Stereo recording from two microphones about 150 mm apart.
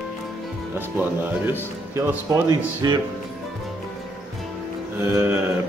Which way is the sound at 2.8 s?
25° right (ahead or behind).